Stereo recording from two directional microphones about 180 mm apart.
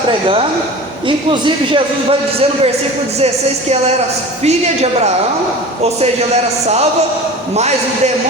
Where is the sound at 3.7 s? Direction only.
35° right (ahead or behind).